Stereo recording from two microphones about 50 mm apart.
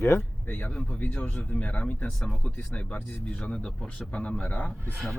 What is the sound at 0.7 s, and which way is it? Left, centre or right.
Speech, left.